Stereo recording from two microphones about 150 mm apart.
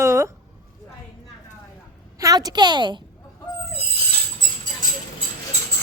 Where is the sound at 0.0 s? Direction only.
20° right (ahead or behind).